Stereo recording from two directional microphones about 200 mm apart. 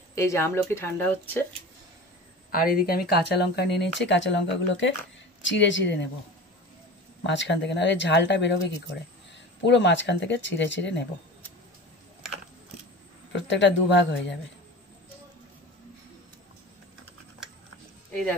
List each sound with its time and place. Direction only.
0.1 s speech: 15° left (ahead or behind)
2.5 s speech: 45° left (ahead or behind); by 6.0 s 65° left (ahead or behind)
7.2 s speech: 60° left (ahead or behind)
13.3 s speech: 65° left (ahead or behind)